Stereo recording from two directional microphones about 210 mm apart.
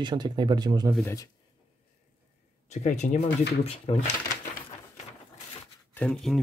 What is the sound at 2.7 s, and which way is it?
Speech, 35° left (ahead or behind).